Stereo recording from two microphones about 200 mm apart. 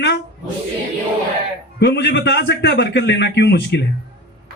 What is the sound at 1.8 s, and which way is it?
A man's voice, 60° left (ahead or behind).